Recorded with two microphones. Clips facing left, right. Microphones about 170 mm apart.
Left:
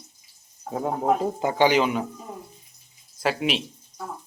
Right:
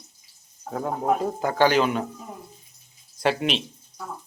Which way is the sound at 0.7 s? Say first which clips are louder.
Left 1 dB; 15° left (ahead or behind).